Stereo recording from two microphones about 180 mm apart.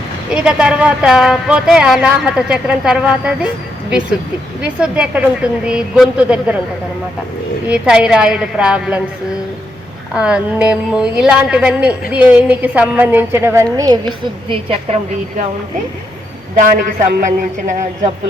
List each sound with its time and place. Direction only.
0.3 s speech: 5° right (ahead or behind)
4.6 s speech: 5° right (ahead or behind)
7.7 s speech: 5° right (ahead or behind)
10.2 s a woman's voice: 5° right (ahead or behind); by 14.9 s 30° right (ahead or behind)
16.6 s speech: 50° right (ahead or behind)